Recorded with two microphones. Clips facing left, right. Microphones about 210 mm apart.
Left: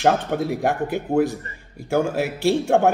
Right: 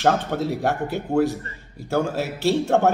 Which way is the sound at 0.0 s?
15° left (ahead or behind).